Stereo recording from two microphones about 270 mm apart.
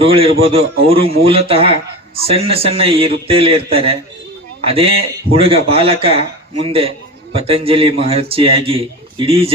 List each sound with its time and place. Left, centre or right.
0.0 s a man's voice: right